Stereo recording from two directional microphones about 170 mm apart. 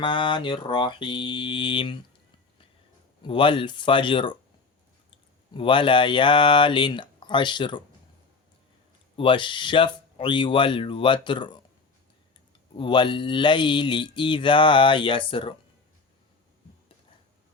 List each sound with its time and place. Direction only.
0.0 s speech: 30° left (ahead or behind)
3.2 s speech: 30° left (ahead or behind)
5.5 s speech: 30° left (ahead or behind)
9.1 s speech: 30° left (ahead or behind)
12.7 s speech: 30° left (ahead or behind)